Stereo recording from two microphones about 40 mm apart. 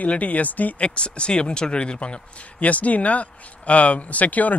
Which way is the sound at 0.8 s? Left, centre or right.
Left.